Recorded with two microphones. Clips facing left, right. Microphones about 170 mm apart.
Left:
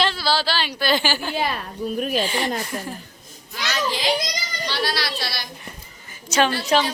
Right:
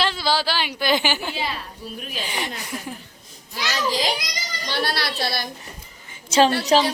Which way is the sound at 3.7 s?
40° right (ahead or behind).